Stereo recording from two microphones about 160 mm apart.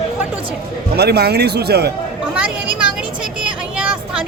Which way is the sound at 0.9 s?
90° right.